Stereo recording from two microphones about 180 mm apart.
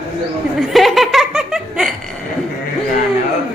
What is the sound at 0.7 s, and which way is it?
Laughter, centre (ahead or behind).